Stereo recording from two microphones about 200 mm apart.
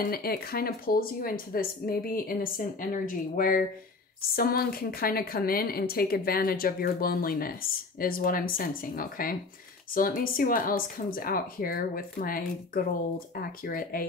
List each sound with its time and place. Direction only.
0.0 s a woman's voice: 50° left (ahead or behind)